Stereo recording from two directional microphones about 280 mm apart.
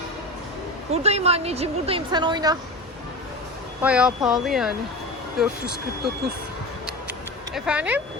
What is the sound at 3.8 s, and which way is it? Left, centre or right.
Speech, centre.